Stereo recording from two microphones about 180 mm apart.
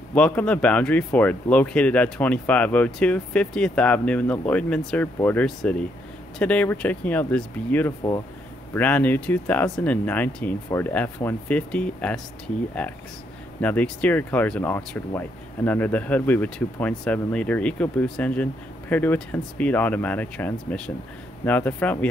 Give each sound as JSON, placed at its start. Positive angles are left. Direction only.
{"t": 0.1, "sound": "speech", "side_deg": 5}
{"t": 13.6, "sound": "speech", "side_deg": 10}